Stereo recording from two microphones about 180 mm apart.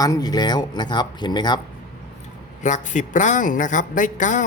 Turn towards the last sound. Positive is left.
turn(degrees=45)  # may be behind; listen again after turning